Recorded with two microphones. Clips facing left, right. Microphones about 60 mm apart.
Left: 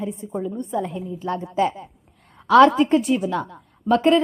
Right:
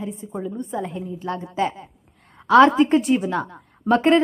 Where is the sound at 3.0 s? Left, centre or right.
Right.